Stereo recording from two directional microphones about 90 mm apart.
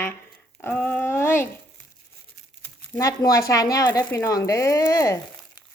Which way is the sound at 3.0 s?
40° left (ahead or behind).